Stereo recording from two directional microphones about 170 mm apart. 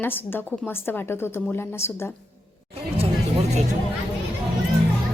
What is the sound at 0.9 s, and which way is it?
Speech, 15° left (ahead or behind).